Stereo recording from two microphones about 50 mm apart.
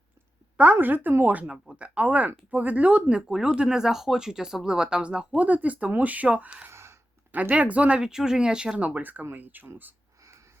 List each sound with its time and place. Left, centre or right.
0.5 s speech: right
5.4 s speech: right
6.7 s a sound: right
7.5 s speech: right
8.8 s speech: right